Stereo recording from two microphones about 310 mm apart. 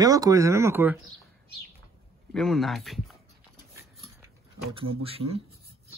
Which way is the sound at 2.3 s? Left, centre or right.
Centre.